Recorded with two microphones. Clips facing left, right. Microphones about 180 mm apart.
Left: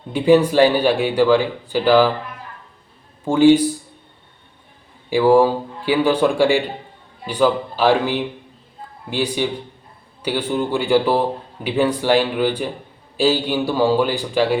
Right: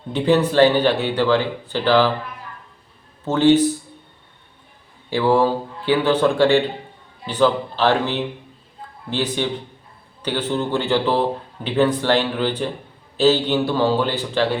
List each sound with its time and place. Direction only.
0.1 s speech: 10° left (ahead or behind)
3.2 s speech: 10° left (ahead or behind)
5.0 s speech: 10° left (ahead or behind)